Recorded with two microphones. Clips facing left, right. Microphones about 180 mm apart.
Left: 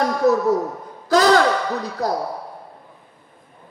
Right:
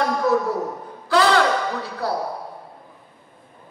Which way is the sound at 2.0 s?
40° left (ahead or behind).